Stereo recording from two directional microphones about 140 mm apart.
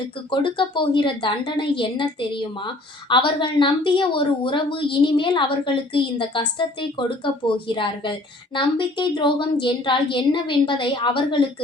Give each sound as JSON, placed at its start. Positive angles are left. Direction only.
{"t": 0.3, "sound": "a woman's voice", "side_deg": 35}